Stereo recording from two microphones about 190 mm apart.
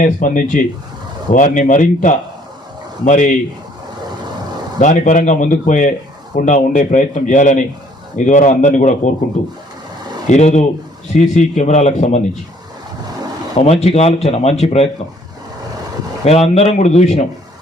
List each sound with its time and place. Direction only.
0.0 s a man's voice: 45° left (ahead or behind)
4.8 s speech: 40° left (ahead or behind)
10.2 s speech: 35° left (ahead or behind)
13.6 s speech: 35° left (ahead or behind)
16.2 s speech: 35° left (ahead or behind)